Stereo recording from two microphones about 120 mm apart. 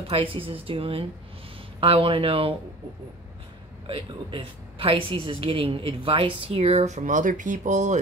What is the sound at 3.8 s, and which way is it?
A woman's voice, 45° right (ahead or behind).